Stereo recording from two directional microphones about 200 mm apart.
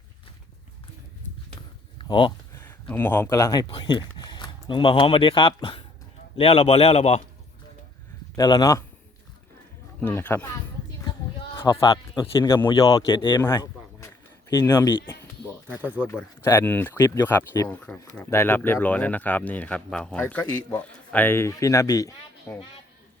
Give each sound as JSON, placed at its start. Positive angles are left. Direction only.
{"t": 2.0, "sound": "a sound", "side_deg": 25}
{"t": 2.9, "sound": "a man's voice", "side_deg": 10}
{"t": 8.4, "sound": "speech", "side_deg": 20}
{"t": 10.0, "sound": "speech", "side_deg": 10}
{"t": 11.5, "sound": "speech", "side_deg": 20}
{"t": 14.5, "sound": "speech", "side_deg": 15}
{"t": 15.8, "sound": "speech", "side_deg": -10}
{"t": 16.0, "sound": "speech", "side_deg": 15}